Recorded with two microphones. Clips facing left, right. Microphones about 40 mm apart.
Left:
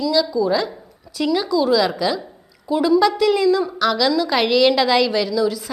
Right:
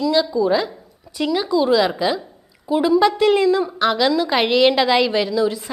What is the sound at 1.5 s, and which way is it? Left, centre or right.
A woman's voice, right.